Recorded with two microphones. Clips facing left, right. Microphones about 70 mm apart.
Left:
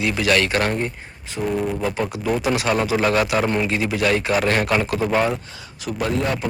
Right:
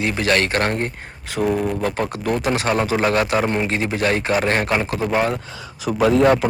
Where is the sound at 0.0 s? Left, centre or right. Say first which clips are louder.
Even; right.